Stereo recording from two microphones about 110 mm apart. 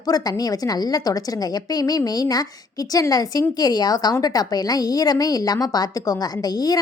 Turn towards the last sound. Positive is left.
turn(degrees=35)  # may be behind; listen again after turning